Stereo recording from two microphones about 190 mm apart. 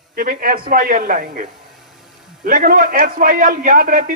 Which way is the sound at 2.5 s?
45° right (ahead or behind).